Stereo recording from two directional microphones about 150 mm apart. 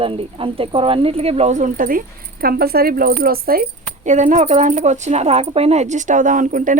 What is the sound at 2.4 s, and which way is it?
A woman's voice, 90° right.